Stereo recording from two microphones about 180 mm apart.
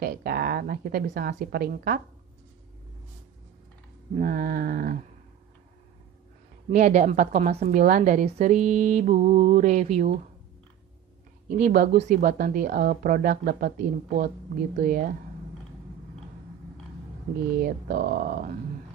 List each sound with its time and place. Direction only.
0.0 s speech: 60° right (ahead or behind)
4.2 s speech: 50° right (ahead or behind)
6.7 s speech: 45° right (ahead or behind)
11.6 s speech: 50° right (ahead or behind)
17.6 s speech: 55° right (ahead or behind)